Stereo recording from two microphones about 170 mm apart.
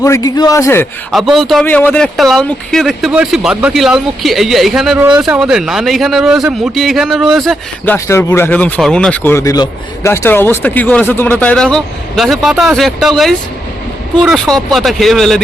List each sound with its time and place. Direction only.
0.0 s a man's voice: 20° left (ahead or behind)
1.1 s speech: centre (ahead or behind)
7.9 s speech: 15° left (ahead or behind)